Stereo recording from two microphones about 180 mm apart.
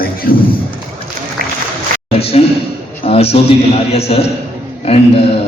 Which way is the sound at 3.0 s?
35° left (ahead or behind).